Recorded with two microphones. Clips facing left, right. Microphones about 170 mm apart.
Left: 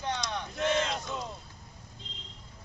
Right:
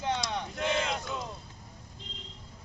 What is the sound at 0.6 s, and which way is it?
Speech, 15° right (ahead or behind).